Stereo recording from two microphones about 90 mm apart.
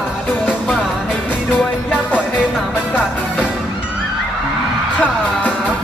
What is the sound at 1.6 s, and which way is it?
Music, 10° left (ahead or behind).